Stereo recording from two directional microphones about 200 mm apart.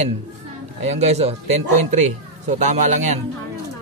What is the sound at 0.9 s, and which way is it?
Speech, 30° right (ahead or behind).